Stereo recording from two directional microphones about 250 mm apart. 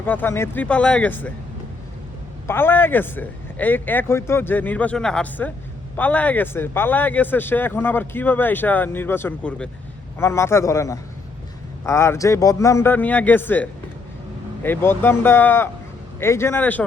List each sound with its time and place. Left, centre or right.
0.0 s speech: centre
2.5 s speech: centre